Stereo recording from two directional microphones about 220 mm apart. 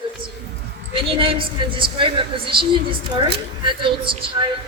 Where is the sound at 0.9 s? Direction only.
25° right (ahead or behind).